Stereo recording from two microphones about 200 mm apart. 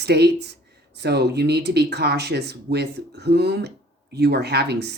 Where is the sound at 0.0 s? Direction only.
55° right (ahead or behind).